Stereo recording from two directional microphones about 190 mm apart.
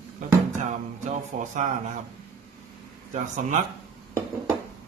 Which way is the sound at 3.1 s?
40° right (ahead or behind).